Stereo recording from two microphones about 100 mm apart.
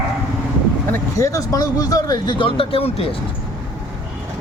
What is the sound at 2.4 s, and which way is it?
Speech, 60° left (ahead or behind).